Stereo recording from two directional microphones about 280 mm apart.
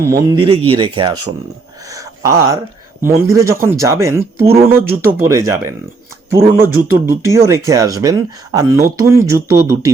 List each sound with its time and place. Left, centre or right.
0.0 s speech: centre